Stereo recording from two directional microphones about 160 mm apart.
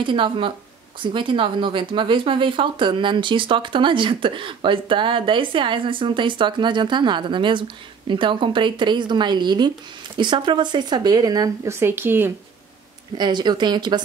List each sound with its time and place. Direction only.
0.0 s speech: 30° right (ahead or behind); by 12.3 s 15° right (ahead or behind)
13.2 s speech: 25° right (ahead or behind)